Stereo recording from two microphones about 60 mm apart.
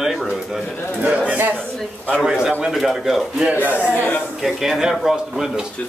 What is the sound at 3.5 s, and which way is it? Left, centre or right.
Speech, left.